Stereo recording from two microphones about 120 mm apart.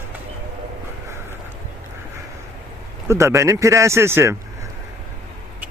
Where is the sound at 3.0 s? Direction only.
25° right (ahead or behind).